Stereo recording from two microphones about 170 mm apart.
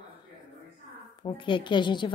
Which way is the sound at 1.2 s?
30° left (ahead or behind).